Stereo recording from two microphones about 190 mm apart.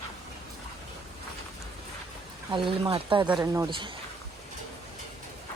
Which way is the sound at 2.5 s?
25° right (ahead or behind).